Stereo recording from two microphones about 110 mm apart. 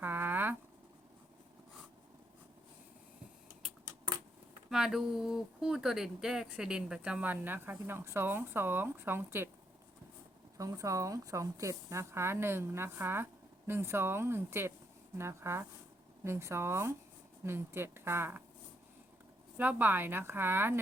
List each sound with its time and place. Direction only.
0.0 s a sound: 20° right (ahead or behind)
4.7 s speech: 5° right (ahead or behind); by 9.5 s 20° right (ahead or behind)
10.6 s speech: 30° right (ahead or behind)
19.5 s speech: 15° right (ahead or behind)